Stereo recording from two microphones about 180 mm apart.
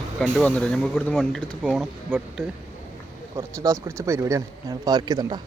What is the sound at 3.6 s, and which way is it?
A man's voice, 15° right (ahead or behind).